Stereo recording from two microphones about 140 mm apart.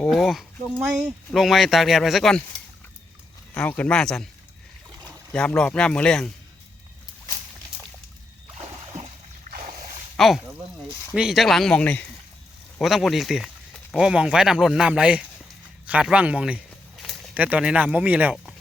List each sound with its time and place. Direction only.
0.0 s speech: centre (ahead or behind)
3.5 s speech: 10° left (ahead or behind)
8.5 s a sound: 45° right (ahead or behind)
9.6 s dog: 75° right (ahead or behind)
10.2 s speech: centre (ahead or behind)
12.8 s speech: centre (ahead or behind)
17.0 s a sound: centre (ahead or behind)
17.3 s speech: 10° right (ahead or behind)